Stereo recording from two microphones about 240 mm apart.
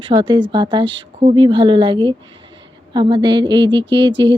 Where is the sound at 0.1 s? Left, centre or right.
Centre.